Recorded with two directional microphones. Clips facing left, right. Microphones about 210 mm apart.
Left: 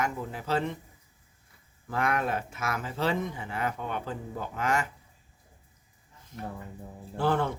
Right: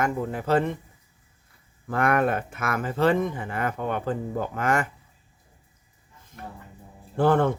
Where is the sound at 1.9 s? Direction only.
55° right (ahead or behind).